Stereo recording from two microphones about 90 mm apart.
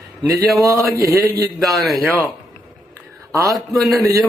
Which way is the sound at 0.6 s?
35° right (ahead or behind).